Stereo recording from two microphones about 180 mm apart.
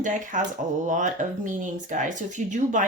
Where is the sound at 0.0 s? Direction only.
45° right (ahead or behind).